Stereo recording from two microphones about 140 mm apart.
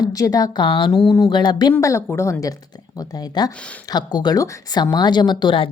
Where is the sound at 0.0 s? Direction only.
25° left (ahead or behind).